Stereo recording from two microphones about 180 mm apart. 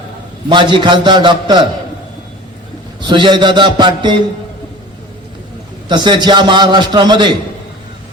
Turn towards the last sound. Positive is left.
turn(degrees=-25)  # may be behind; listen again after turning